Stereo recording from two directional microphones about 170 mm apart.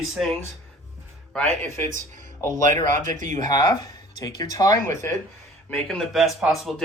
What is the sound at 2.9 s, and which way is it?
Speech, 50° right (ahead or behind).